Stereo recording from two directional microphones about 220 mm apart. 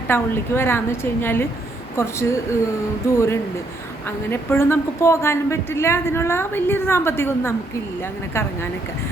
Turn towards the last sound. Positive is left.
turn(degrees=10)  # may be behind; listen again after turning